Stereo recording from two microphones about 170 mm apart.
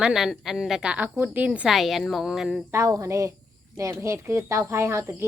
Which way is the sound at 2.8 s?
20° right (ahead or behind).